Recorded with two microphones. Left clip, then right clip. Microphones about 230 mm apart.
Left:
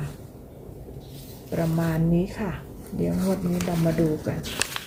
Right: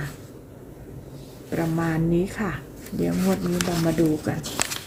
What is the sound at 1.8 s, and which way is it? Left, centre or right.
Speech, centre.